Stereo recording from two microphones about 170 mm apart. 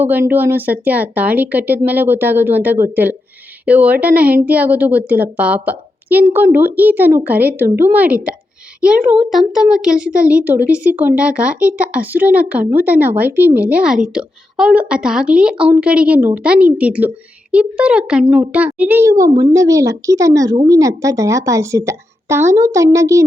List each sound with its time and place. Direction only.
0.0 s a woman's voice: 10° right (ahead or behind)